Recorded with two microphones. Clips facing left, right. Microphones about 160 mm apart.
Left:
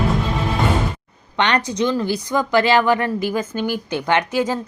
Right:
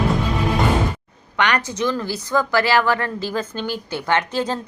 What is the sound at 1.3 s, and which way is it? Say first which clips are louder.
A woman's voice: left 2 dB; 25° left (ahead or behind).